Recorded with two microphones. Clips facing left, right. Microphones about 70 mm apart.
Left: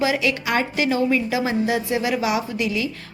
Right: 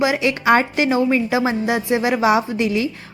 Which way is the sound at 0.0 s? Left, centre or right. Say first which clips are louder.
Right 4 dB; right.